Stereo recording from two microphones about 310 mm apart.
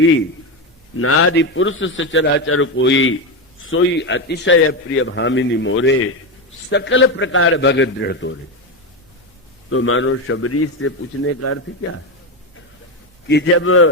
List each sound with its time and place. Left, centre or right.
0.9 s a man's voice: left
9.6 s a man's voice: left
13.2 s a man's voice: left